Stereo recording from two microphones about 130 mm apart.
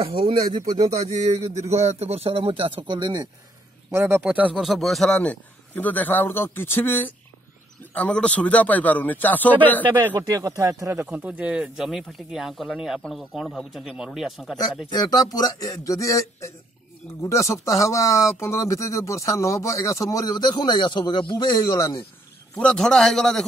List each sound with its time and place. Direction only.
0.0 s speech: 45° right (ahead or behind)
0.9 s speech: 60° right (ahead or behind); by 3.3 s 35° right (ahead or behind)
3.9 s a man's voice: 15° right (ahead or behind); by 9.8 s 10° left (ahead or behind)
10.0 s speech: 20° right (ahead or behind)
11.0 s speech: 10° right (ahead or behind)
14.9 s speech: 30° left (ahead or behind)
22.6 s speech: 5° left (ahead or behind)